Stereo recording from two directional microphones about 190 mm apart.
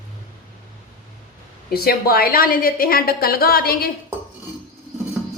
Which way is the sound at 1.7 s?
55° left (ahead or behind).